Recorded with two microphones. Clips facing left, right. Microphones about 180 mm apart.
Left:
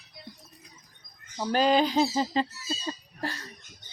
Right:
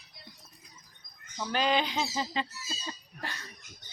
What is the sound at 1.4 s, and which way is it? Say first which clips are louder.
Speech: left 6 dB; 40° left (ahead or behind).